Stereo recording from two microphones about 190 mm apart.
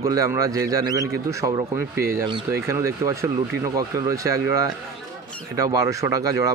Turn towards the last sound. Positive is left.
turn(degrees=-20)  # may be behind; listen again after turning